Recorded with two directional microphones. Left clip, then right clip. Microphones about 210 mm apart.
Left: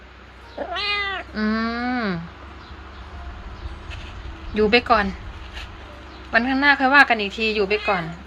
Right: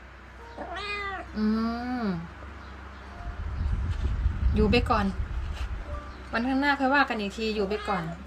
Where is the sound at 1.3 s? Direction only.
Centre (ahead or behind).